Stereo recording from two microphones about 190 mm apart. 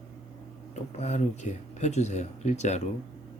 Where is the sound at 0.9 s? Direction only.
40° left (ahead or behind).